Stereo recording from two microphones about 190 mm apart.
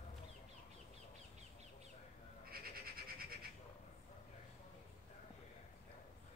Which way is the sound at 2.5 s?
50° right (ahead or behind).